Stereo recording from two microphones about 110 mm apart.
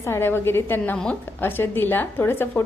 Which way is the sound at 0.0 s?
20° left (ahead or behind).